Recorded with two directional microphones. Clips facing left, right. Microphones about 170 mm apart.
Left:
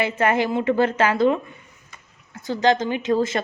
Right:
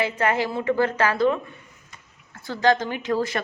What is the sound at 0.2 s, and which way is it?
A woman's voice, 25° left (ahead or behind).